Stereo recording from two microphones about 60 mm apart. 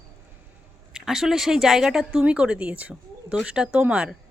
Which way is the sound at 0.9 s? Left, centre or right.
Centre.